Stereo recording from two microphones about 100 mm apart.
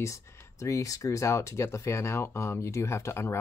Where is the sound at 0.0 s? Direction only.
30° left (ahead or behind).